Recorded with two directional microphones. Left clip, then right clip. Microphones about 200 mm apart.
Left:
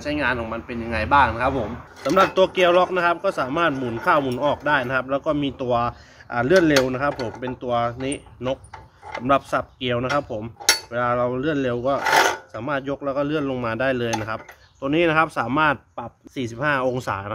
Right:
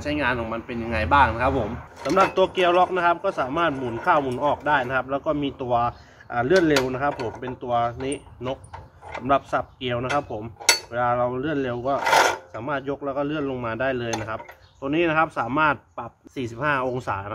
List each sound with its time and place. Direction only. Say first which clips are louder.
0.0 s a man's voice: left 1 dB; 10° left (ahead or behind)
2.0 s speech: left 2 dB; 45° left (ahead or behind)